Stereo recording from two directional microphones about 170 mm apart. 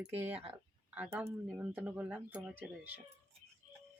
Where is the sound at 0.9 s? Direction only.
10° right (ahead or behind).